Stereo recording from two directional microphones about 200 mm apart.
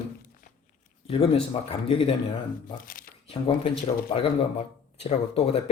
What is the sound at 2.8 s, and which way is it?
Shuffling cards, 45° left (ahead or behind).